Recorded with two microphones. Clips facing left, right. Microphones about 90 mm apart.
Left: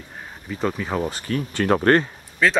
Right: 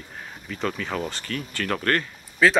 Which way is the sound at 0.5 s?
15° left (ahead or behind).